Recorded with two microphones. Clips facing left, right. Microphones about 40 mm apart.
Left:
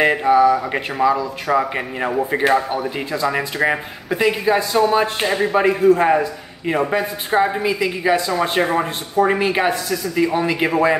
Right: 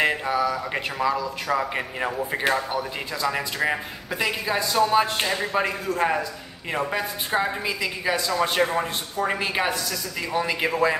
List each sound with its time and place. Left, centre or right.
0.0 s speech: centre